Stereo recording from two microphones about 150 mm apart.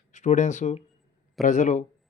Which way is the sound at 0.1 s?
55° left (ahead or behind).